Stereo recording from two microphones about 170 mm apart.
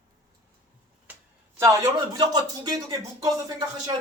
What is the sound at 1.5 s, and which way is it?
Speech, 15° right (ahead or behind).